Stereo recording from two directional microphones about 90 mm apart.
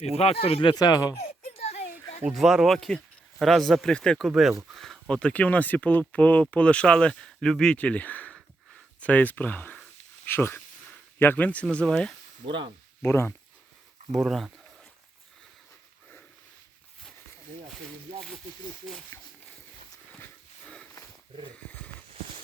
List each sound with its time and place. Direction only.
0.3 s speech: 90° left
0.8 s speech: 45° left (ahead or behind)
2.3 s speech: centre (ahead or behind)
4.3 s speech: centre (ahead or behind)
13.0 s speech: 25° left (ahead or behind)
14.1 s speech: centre (ahead or behind)
19.1 s a sound: 35° left (ahead or behind)
20.1 s a sound: 15° left (ahead or behind)